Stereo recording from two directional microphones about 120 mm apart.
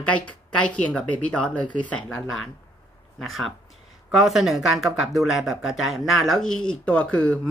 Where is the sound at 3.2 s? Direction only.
Centre (ahead or behind).